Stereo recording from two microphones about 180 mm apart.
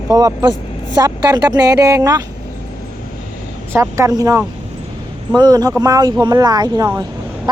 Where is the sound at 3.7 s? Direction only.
15° right (ahead or behind).